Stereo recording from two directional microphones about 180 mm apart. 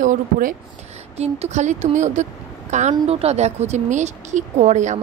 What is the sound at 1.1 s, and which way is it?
Speech, 35° right (ahead or behind).